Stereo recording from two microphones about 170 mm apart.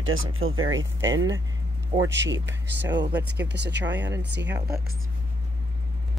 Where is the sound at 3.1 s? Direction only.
10° right (ahead or behind).